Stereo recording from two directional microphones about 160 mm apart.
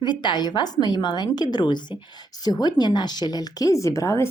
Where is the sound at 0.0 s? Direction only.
30° left (ahead or behind).